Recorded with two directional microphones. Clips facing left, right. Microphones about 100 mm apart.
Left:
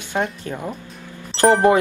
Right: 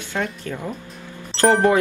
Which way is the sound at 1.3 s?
Centre (ahead or behind).